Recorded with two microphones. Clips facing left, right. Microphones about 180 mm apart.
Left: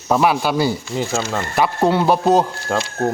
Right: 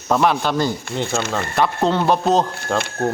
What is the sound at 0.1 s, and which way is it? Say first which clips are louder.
Speech: left 1 dB; 5° left (ahead or behind).